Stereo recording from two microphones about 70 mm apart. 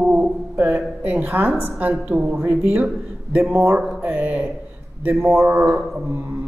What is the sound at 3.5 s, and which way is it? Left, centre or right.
Speech, right.